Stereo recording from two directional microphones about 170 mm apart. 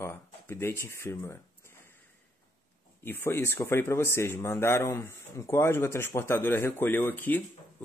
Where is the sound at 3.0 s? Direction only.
15° left (ahead or behind).